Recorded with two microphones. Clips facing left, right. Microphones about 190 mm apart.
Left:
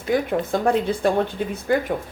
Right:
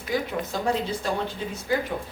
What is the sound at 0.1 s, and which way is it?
Speech, 55° left (ahead or behind).